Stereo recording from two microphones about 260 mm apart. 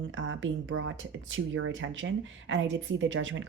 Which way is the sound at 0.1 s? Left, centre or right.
Right.